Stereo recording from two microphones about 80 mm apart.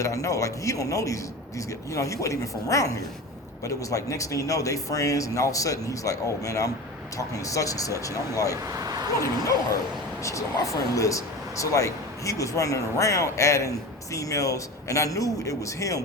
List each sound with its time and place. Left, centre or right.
0.0 s speech: left
8.7 s a sound: right
10.2 s speech: left